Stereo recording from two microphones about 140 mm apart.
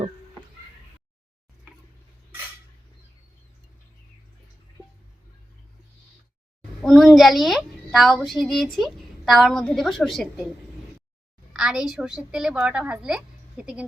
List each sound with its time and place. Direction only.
6.8 s a child's voice: centre (ahead or behind)
11.5 s a child's voice: 5° right (ahead or behind)